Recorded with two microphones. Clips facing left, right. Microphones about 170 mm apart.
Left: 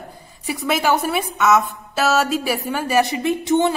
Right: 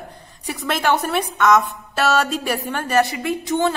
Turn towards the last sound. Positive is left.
turn(degrees=25)  # may be behind; listen again after turning